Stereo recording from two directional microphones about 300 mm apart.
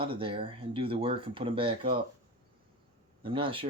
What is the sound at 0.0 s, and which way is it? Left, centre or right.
Speech, centre.